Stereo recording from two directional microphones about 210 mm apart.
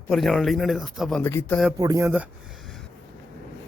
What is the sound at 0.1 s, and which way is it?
Speech, centre (ahead or behind).